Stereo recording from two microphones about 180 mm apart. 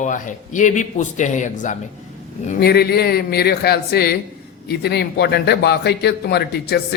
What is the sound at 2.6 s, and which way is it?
A man's voice, 60° left (ahead or behind).